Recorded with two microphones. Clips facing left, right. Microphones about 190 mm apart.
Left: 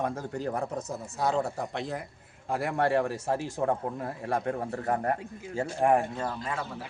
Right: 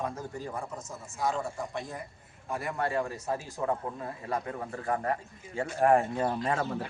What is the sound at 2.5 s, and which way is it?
A man's voice, 85° left.